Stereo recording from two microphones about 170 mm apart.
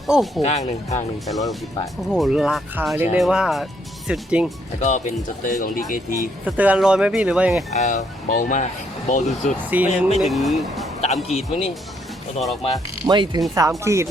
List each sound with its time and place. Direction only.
0.1 s speech: centre (ahead or behind)
0.4 s speech: 40° left (ahead or behind)
1.3 s speech: centre (ahead or behind)
4.8 s speech: 45° left (ahead or behind)
6.4 s speech: 10° right (ahead or behind)
7.7 s speech: 45° left (ahead or behind)
9.6 s speech: 10° right (ahead or behind)
11.0 s speech: 40° left (ahead or behind)
13.1 s speech: 25° right (ahead or behind)